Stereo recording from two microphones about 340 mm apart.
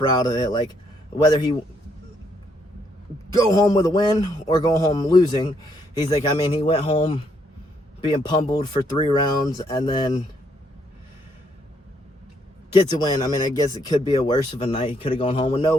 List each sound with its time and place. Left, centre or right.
0.1 s speech: centre
3.3 s speech: centre
12.7 s speech: centre